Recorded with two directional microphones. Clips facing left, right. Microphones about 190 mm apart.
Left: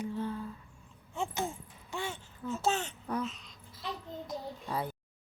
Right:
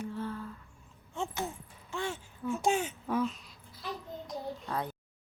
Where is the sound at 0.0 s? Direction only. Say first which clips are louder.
Left 2 dB; 15° left (ahead or behind).